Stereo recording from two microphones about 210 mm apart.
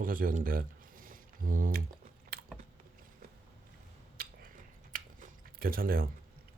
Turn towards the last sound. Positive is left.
turn(degrees=-45)  # may be behind; listen again after turning